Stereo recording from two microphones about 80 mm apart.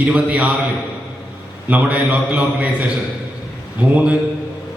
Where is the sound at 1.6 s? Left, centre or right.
Centre.